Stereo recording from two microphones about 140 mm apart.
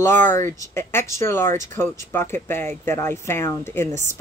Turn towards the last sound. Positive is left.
turn(degrees=20)  # may be behind; listen again after turning